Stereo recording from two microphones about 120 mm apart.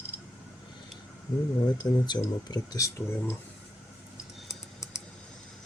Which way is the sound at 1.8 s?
35° left (ahead or behind).